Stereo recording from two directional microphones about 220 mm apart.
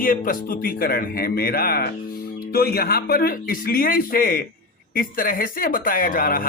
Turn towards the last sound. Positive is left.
turn(degrees=40)  # may be behind; listen again after turning